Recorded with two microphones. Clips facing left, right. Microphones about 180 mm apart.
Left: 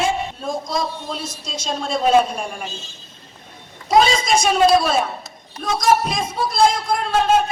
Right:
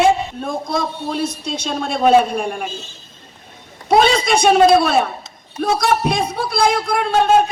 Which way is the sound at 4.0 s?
60° right (ahead or behind).